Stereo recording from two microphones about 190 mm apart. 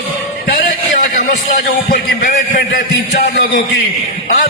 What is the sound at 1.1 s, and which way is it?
A man's voice, 45° left (ahead or behind).